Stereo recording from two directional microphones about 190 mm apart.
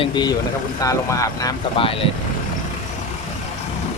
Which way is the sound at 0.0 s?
25° left (ahead or behind).